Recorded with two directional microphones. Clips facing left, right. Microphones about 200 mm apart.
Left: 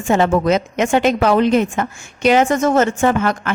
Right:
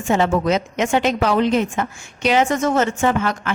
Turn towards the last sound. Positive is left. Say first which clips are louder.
# left 3 dB
turn(degrees=50)  # may be behind; listen again after turning